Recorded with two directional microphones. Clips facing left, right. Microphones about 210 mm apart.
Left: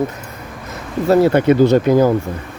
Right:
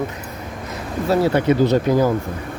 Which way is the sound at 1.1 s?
60° left (ahead or behind).